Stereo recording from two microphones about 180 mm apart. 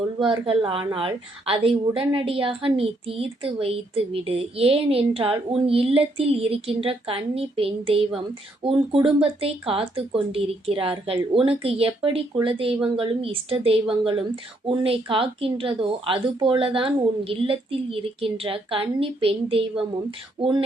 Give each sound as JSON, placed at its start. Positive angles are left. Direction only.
{"t": 0.2, "sound": "a woman's voice", "side_deg": -30}